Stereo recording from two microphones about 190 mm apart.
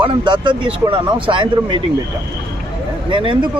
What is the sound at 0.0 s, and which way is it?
Speech, 25° right (ahead or behind).